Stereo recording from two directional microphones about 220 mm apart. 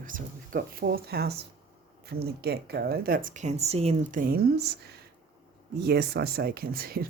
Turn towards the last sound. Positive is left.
turn(degrees=-40)  # may be behind; listen again after turning